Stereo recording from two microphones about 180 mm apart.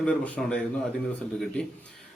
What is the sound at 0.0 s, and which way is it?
Speech, 5° left (ahead or behind).